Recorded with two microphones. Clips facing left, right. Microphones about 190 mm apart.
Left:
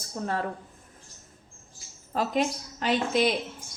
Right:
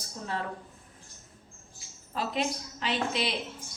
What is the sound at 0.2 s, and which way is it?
Speech, 55° left (ahead or behind).